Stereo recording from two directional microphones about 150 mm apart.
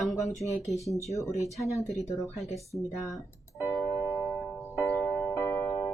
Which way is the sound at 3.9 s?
25° left (ahead or behind).